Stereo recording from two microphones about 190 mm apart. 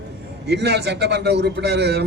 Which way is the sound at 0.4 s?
60° right (ahead or behind).